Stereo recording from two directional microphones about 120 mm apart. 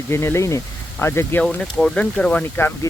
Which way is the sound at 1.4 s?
5° left (ahead or behind).